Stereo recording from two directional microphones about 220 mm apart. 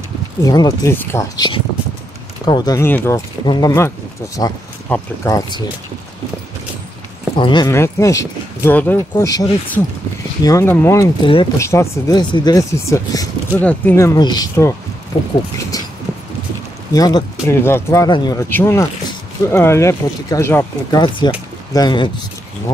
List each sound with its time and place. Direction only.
0.5 s speech: 15° left (ahead or behind)
7.3 s speech: 20° left (ahead or behind)
11.2 s speech: 25° left (ahead or behind)
11.6 s speech: 15° left (ahead or behind)
15.7 s vehicle: 15° left (ahead or behind)
16.9 s speech: 15° left (ahead or behind)